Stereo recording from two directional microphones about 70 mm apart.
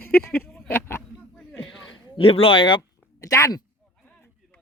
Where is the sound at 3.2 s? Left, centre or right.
Left.